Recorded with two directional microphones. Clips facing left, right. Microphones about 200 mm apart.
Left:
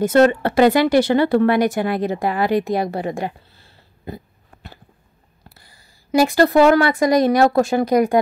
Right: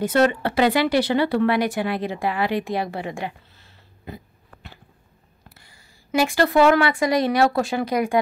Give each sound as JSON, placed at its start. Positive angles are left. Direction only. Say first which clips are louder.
{"t": 0.0, "sound": "speech", "louder": "left 5 dB", "side_deg": 45}
{"t": 5.5, "sound": "a woman's voice", "louder": "left 1 dB", "side_deg": 35}